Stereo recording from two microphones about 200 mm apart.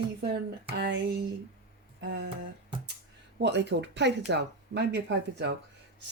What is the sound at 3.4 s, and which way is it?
Speech, 60° right (ahead or behind).